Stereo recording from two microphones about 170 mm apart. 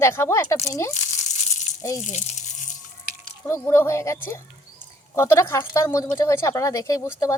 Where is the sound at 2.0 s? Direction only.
45° left (ahead or behind).